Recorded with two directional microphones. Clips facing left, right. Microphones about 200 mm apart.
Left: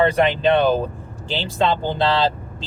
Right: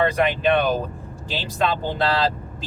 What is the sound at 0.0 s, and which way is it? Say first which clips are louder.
Speech: left 3 dB; 30° left (ahead or behind).